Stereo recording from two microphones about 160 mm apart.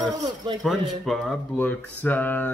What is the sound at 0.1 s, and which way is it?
Speech, 25° right (ahead or behind).